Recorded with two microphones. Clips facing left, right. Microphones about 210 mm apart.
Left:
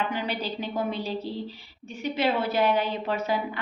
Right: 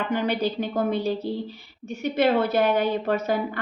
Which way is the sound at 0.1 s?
50° right (ahead or behind).